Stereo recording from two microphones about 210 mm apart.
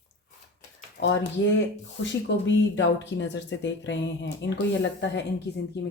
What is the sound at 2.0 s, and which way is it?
Speech, 60° left (ahead or behind).